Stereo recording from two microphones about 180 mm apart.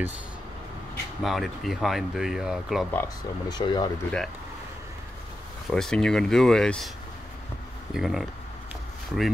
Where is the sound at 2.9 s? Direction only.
15° left (ahead or behind).